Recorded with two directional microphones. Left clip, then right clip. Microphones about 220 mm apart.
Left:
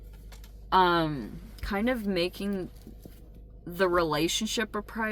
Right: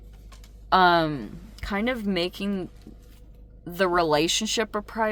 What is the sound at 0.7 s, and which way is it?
Speech, 40° right (ahead or behind).